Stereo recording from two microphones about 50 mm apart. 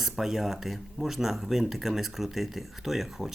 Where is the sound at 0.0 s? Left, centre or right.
Centre.